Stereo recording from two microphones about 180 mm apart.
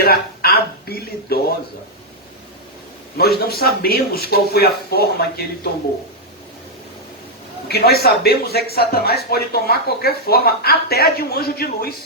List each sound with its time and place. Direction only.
0.0 s speech: 60° left (ahead or behind)
3.2 s speech: 60° left (ahead or behind)
7.7 s speech: 60° left (ahead or behind)